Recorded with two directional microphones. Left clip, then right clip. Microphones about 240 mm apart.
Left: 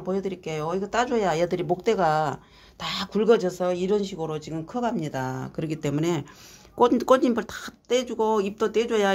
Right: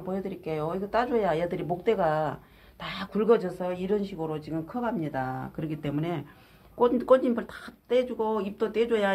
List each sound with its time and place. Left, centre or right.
0.1 s speech: left